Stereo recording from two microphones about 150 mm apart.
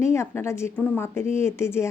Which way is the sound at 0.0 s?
20° left (ahead or behind).